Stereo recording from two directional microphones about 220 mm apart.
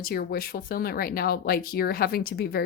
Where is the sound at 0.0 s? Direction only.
45° left (ahead or behind).